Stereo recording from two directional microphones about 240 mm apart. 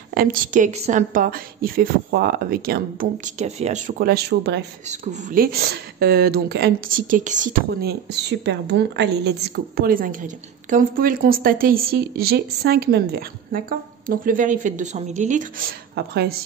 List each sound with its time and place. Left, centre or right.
0.1 s speech: right
4.8 s speech: right
16.0 s speech: right